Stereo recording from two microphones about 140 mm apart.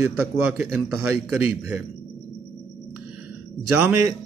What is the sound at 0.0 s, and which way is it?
A man's voice, 15° right (ahead or behind).